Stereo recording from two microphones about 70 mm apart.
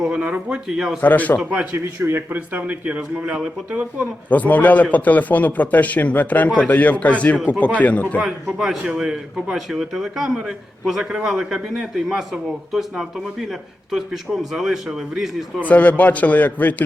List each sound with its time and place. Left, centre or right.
0.2 s speech: right
1.0 s a man's voice: left
1.7 s speech: right; by 4.0 s centre
4.3 s a man's voice: left
8.2 s a man's voice: centre
15.6 s a man's voice: left